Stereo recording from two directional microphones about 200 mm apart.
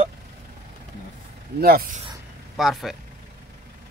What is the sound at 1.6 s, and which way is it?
Speech, 45° right (ahead or behind).